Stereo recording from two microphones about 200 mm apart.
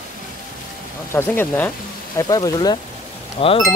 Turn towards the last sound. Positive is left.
turn(degrees=30)  # may be behind; listen again after turning